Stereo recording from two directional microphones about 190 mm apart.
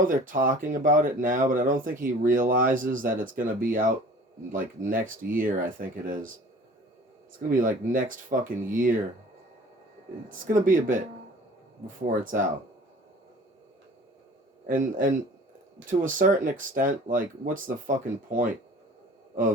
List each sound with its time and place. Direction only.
0.0 s speech: 45° right (ahead or behind)
7.3 s speech: 45° right (ahead or behind)
10.2 s speech: 45° right (ahead or behind)
12.0 s speech: 45° right (ahead or behind)
14.7 s speech: 45° right (ahead or behind)